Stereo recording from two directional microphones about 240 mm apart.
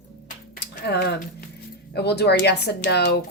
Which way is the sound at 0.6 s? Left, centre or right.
Left.